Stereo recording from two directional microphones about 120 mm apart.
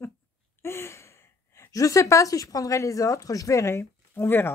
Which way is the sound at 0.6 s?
20° left (ahead or behind).